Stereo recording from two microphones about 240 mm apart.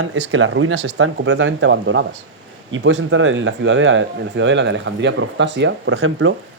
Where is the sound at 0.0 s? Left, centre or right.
Right.